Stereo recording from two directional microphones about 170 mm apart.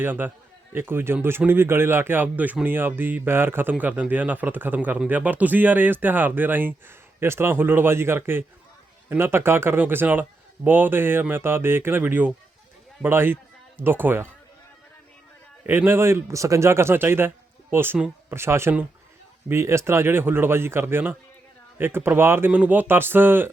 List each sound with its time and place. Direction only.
0.0 s a man's voice: 10° right (ahead or behind)
15.6 s a man's voice: 10° right (ahead or behind)